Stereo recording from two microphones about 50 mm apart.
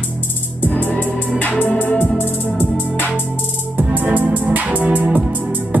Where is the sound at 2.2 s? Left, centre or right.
Left.